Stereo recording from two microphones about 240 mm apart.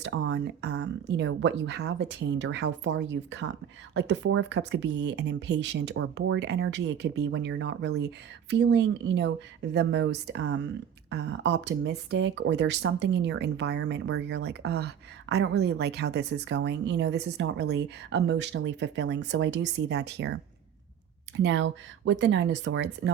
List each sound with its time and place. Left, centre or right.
0.0 s speech: right
21.3 s speech: right